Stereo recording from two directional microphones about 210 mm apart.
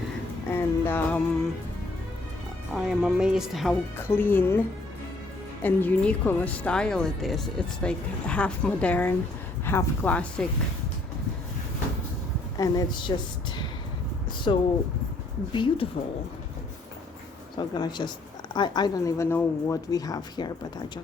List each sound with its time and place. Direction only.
0.4 s music: 10° left (ahead or behind)
2.7 s speech: 5° right (ahead or behind)
4.2 s speech: 10° left (ahead or behind)
5.6 s speech: 5° left (ahead or behind)
12.5 s speech: 15° left (ahead or behind)
14.5 s speech: 25° left (ahead or behind)
17.6 s speech: 20° left (ahead or behind)